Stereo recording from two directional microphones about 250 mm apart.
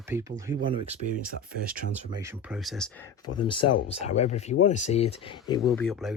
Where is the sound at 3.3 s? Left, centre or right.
Centre.